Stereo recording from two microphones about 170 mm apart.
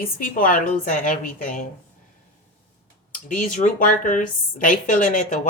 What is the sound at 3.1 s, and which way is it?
Speech, 50° left (ahead or behind).